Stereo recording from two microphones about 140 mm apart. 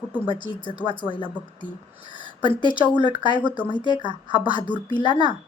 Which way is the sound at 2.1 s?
35° left (ahead or behind).